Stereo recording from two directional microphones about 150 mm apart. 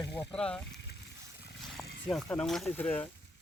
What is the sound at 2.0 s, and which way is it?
Speech, 5° left (ahead or behind).